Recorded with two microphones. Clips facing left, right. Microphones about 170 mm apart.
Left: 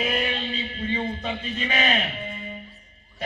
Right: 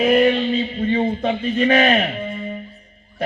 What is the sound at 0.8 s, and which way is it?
A man's voice, 50° right (ahead or behind).